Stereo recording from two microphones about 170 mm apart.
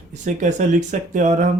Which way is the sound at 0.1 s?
45° right (ahead or behind).